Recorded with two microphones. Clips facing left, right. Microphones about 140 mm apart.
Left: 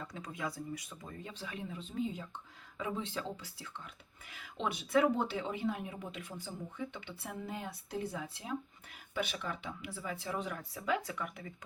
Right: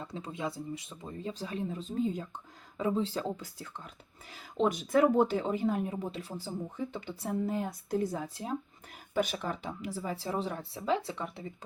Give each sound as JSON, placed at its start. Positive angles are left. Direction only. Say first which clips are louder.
{"t": 0.0, "sound": "speech", "louder": "right 4 dB", "side_deg": -30}
{"t": 1.3, "sound": "speech", "louder": "right 9 dB", "side_deg": -35}